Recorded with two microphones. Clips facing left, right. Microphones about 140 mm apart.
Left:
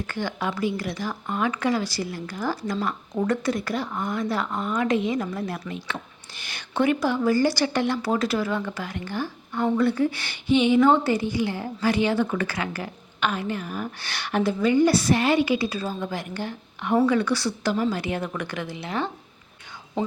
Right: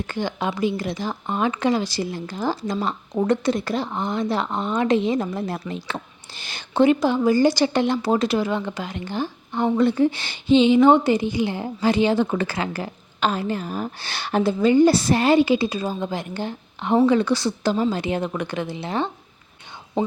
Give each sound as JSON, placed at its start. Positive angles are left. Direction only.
{"t": 0.1, "sound": "speech", "side_deg": -20}